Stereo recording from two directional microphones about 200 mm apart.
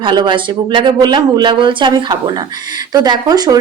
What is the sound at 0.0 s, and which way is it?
Speech, 25° right (ahead or behind).